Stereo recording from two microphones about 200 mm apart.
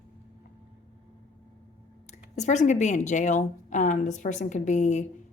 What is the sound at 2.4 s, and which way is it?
A woman's voice, 35° left (ahead or behind).